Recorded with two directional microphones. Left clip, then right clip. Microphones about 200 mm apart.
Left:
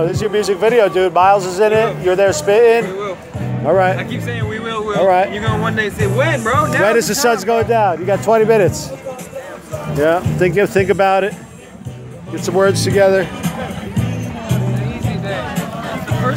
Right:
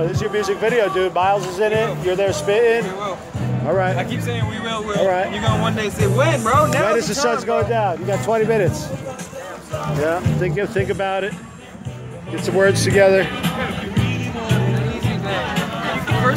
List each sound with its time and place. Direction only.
0.0 s speech: 35° left (ahead or behind)
4.0 s speech: 15° right (ahead or behind)
5.0 s speech: 40° left (ahead or behind)
5.3 s speech: 10° right (ahead or behind); by 6.8 s 10° left (ahead or behind)
6.8 s speech: 45° left (ahead or behind)
9.9 s speech: 45° left (ahead or behind)
12.5 s speech: 15° left (ahead or behind)
13.2 s music: 60° left (ahead or behind)